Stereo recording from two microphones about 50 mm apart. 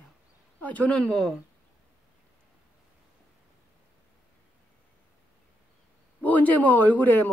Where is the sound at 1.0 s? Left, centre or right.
Centre.